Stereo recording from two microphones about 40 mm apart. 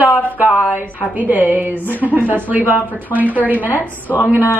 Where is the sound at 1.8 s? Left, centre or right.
Left.